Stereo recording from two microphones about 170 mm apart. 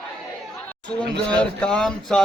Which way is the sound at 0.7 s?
5° left (ahead or behind).